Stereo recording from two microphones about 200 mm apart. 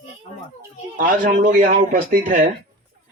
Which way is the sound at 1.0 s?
45° right (ahead or behind).